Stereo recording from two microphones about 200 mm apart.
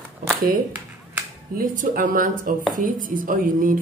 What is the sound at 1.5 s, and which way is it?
A woman's voice, 45° right (ahead or behind).